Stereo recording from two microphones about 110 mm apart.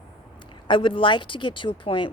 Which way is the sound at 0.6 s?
50° left (ahead or behind).